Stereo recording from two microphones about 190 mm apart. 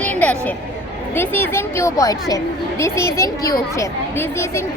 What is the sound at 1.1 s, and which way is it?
Speech, 10° left (ahead or behind).